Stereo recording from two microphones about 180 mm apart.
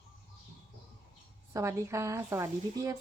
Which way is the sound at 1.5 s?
15° right (ahead or behind).